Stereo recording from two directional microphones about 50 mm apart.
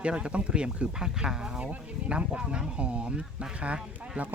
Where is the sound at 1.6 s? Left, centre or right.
Right.